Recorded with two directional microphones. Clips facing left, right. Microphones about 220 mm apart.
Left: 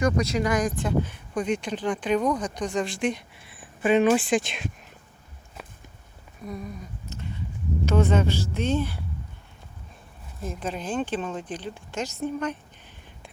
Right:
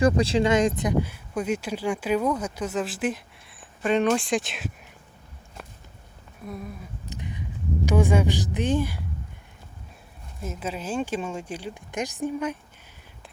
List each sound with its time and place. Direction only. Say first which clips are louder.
0.0 s speech: right 3 dB; 30° right (ahead or behind)
1.0 s speech: even; 5° right (ahead or behind)
5.6 s a sound: even; centre (ahead or behind)
6.4 s speech: left 1 dB; centre (ahead or behind)
7.1 s a sound: right 1 dB; 15° right (ahead or behind)
7.9 s speech: even; 15° right (ahead or behind)
10.4 s speech: even; 5° right (ahead or behind)